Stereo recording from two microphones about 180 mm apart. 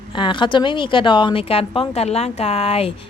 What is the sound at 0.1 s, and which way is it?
A woman's voice, 25° left (ahead or behind).